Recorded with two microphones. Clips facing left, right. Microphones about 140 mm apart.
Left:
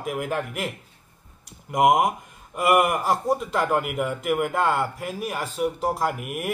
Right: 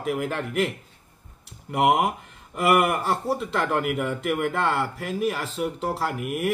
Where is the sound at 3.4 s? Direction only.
10° left (ahead or behind).